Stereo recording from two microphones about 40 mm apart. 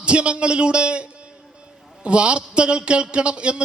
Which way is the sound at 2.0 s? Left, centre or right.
Right.